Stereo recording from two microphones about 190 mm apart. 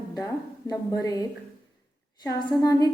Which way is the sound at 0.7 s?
20° left (ahead or behind).